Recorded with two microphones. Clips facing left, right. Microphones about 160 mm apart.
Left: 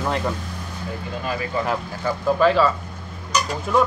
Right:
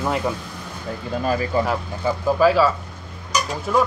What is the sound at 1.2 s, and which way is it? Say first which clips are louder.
Speech: right 6 dB; 40° right (ahead or behind).